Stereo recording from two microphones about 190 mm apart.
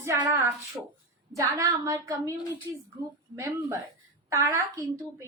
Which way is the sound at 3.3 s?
15° right (ahead or behind).